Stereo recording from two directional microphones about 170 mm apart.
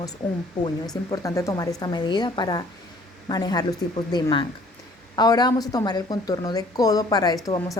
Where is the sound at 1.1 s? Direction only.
20° left (ahead or behind).